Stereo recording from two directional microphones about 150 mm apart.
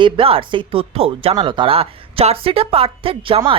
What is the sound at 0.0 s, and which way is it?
A man's voice, 35° right (ahead or behind).